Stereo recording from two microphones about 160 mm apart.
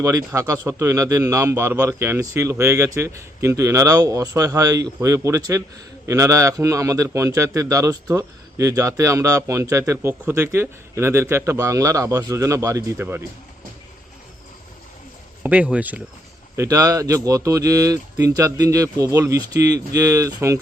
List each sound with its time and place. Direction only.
0.0 s a man's voice: 20° right (ahead or behind)
15.4 s speech: 10° right (ahead or behind)
16.6 s a man's voice: 20° right (ahead or behind)